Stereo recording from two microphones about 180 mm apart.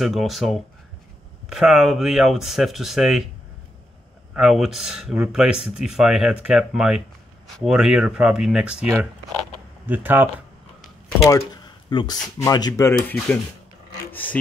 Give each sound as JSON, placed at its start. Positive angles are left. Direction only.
{"t": 0.0, "sound": "speech", "side_deg": 0}
{"t": 4.4, "sound": "speech", "side_deg": 0}
{"t": 11.9, "sound": "speech", "side_deg": 25}
{"t": 14.1, "sound": "filing", "side_deg": 10}